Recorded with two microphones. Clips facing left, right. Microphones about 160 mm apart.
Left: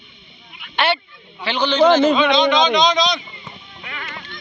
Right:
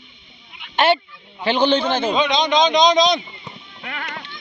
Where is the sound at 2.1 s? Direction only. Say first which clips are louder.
Left 2 dB; 40° right (ahead or behind).